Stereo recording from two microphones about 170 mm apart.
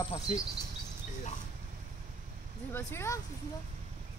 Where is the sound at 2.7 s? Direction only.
15° left (ahead or behind).